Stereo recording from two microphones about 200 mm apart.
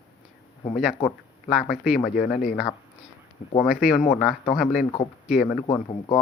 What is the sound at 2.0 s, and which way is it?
Speech, 50° left (ahead or behind).